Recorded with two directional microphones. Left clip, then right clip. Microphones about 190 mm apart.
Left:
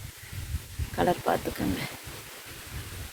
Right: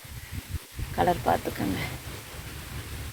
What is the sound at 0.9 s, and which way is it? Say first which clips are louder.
Speech: right 2 dB; 15° left (ahead or behind).